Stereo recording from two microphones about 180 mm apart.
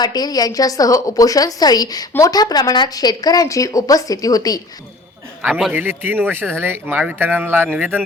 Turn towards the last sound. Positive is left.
turn(degrees=-10)  # may be behind; listen again after turning